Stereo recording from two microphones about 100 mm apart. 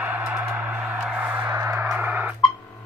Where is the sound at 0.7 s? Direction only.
5° right (ahead or behind).